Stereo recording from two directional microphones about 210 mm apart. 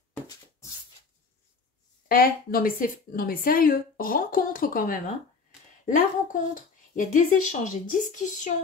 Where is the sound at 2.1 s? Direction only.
45° left (ahead or behind).